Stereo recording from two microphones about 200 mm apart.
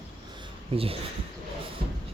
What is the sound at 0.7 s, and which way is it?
Speech, 30° right (ahead or behind).